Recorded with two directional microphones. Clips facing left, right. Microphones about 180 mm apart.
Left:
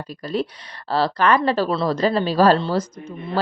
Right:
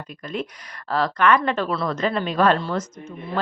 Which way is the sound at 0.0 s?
35° left (ahead or behind).